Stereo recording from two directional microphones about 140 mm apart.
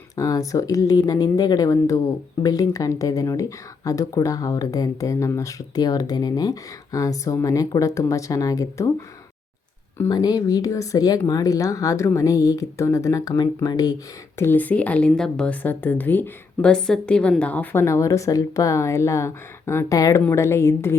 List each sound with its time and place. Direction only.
0.2 s speech: 25° left (ahead or behind)
10.1 s speech: 30° left (ahead or behind)
14.3 s a woman's voice: 15° left (ahead or behind)